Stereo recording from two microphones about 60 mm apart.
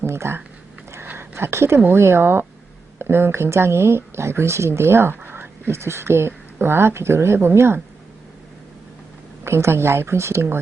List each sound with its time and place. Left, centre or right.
0.0 s speech: right
1.0 s a sound: right
2.0 s speech: right
9.4 s speech: right